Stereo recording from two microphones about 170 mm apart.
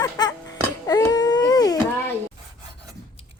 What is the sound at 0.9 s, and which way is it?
Baby cry, 20° left (ahead or behind).